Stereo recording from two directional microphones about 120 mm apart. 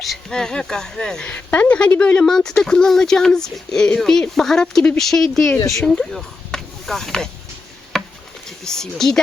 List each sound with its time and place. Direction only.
0.0 s speech: 5° left (ahead or behind)
7.9 s a sound: centre (ahead or behind)
8.4 s speech: 5° left (ahead or behind)